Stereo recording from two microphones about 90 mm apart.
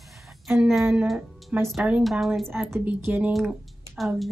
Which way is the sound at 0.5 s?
Centre (ahead or behind).